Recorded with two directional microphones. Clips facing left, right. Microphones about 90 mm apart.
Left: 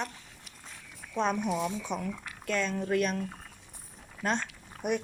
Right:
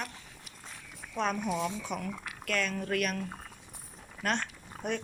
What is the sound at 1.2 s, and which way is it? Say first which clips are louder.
Speech: left 2 dB; 20° left (ahead or behind).